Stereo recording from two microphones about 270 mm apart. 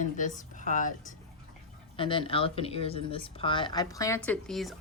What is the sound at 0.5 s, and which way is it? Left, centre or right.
Music, left.